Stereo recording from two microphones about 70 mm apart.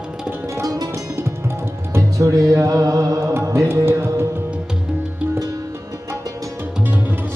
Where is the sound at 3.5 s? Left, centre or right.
Right.